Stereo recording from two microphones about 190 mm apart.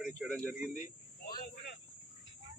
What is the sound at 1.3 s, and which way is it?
Cricket, 50° left (ahead or behind).